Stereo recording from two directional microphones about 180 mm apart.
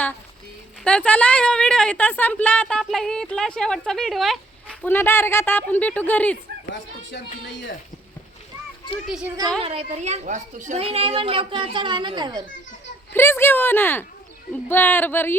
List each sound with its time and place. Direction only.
0.9 s a woman's voice: 5° left (ahead or behind)
6.7 s speech: 90° left
9.0 s a child's voice: 5° right (ahead or behind)
9.6 s a child's voice: 35° right (ahead or behind)
13.1 s a woman's voice: 15° left (ahead or behind)